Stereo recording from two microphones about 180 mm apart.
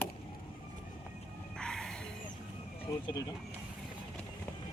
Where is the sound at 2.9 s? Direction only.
20° left (ahead or behind).